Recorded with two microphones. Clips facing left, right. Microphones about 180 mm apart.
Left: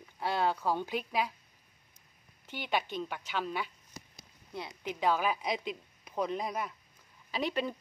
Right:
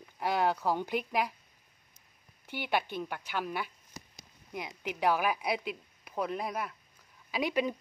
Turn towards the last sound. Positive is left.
turn(degrees=-10)  # may be behind; listen again after turning